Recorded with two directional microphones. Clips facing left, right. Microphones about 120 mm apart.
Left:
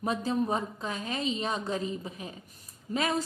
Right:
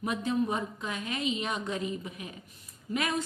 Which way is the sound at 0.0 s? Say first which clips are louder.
Left 1 dB; 35° left (ahead or behind).